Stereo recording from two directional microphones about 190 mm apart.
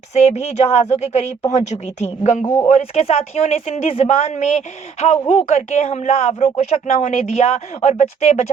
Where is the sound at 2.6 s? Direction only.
35° left (ahead or behind).